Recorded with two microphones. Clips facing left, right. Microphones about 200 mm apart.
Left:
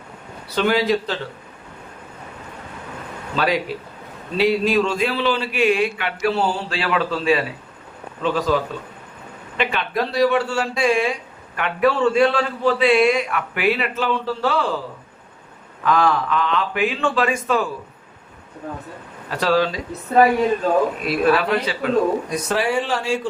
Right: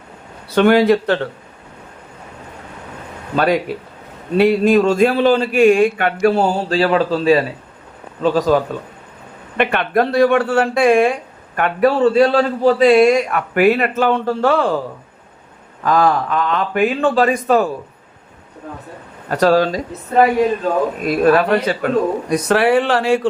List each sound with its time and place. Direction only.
0.5 s speech: 55° right (ahead or behind)
3.3 s speech: 50° right (ahead or behind)
9.6 s speech: 55° right (ahead or behind)
15.8 s speech: 40° right (ahead or behind)
19.3 s speech: 45° right (ahead or behind)
21.1 s speech: 45° right (ahead or behind)
22.3 s speech: 65° right (ahead or behind)